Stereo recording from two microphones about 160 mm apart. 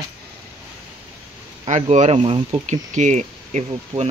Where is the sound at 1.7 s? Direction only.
45° right (ahead or behind).